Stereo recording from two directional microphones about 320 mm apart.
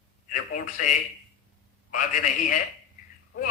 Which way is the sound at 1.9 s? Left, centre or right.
Left.